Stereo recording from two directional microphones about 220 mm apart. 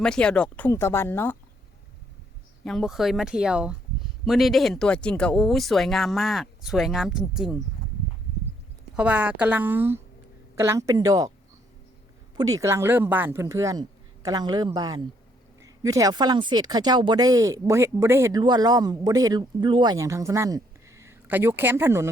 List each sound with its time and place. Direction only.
0.0 s speech: 5° left (ahead or behind)
2.6 s speech: centre (ahead or behind)
9.0 s speech: 5° right (ahead or behind)
12.4 s a man's voice: 15° right (ahead or behind)